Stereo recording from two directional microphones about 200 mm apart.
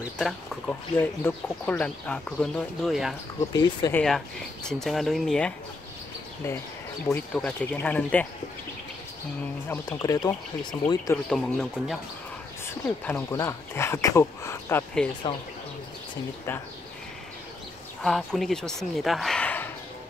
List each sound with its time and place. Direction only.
0.2 s speech: 5° left (ahead or behind)
7.3 s speech: 5° left (ahead or behind)
9.7 s speech: 20° left (ahead or behind)
11.2 s speech: centre (ahead or behind)
18.0 s speech: centre (ahead or behind)